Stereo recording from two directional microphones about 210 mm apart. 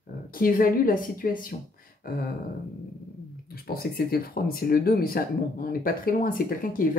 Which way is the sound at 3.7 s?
45° left (ahead or behind).